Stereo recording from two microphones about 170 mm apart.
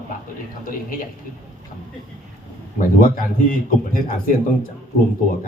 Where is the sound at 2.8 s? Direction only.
55° left (ahead or behind).